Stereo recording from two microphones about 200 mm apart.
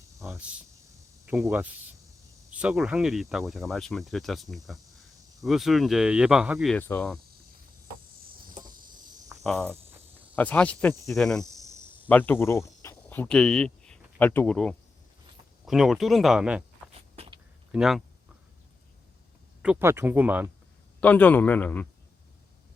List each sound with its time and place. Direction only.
1.3 s speech: 10° right (ahead or behind)
6.7 s speech: 10° left (ahead or behind)
9.4 s cricket: centre (ahead or behind)
10.3 s speech: 10° left (ahead or behind)
17.2 s a sound: 25° right (ahead or behind)
17.7 s speech: centre (ahead or behind)
19.6 s speech: 10° right (ahead or behind)
21.0 s speech: 10° left (ahead or behind)